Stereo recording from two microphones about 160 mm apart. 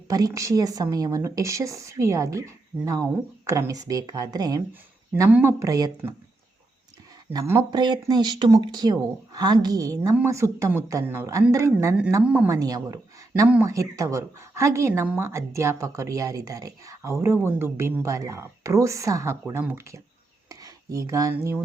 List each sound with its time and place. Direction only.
0.1 s speech: 25° right (ahead or behind)
7.3 s speech: 15° right (ahead or behind)
7.7 s speech: 25° right (ahead or behind)
12.2 s speech: 10° right (ahead or behind)
12.5 s speech: 20° right (ahead or behind)
20.5 s a sound: 20° right (ahead or behind)
21.3 s speech: 15° right (ahead or behind)